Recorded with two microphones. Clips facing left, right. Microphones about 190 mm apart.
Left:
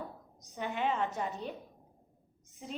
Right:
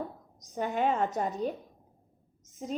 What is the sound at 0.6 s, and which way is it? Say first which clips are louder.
Speech: right 5 dB; 45° right (ahead or behind).